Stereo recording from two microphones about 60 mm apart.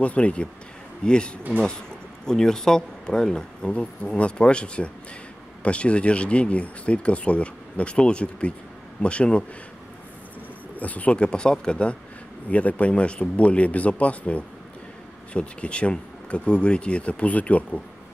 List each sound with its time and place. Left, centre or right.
0.0 s speech: left
10.8 s speech: left